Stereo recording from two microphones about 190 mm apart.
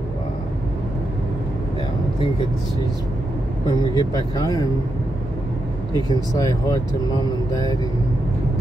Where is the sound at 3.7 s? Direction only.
20° left (ahead or behind).